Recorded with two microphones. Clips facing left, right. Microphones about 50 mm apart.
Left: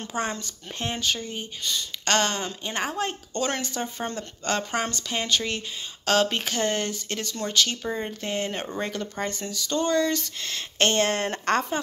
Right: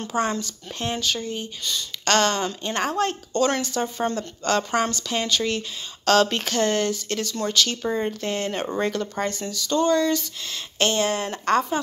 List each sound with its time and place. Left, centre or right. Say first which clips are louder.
0.2 s speech: right 5 dB; left
7.8 s speech: right 5 dB; centre
8.1 s speech: right 3 dB; centre
9.2 s speech: right 3 dB; left